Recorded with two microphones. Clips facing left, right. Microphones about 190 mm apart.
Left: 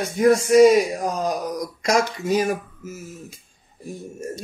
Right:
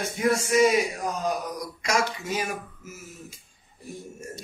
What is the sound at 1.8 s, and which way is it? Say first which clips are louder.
Speech: left 5 dB; 40° left (ahead or behind).